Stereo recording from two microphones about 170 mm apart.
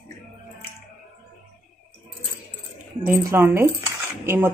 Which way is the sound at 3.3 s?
15° right (ahead or behind).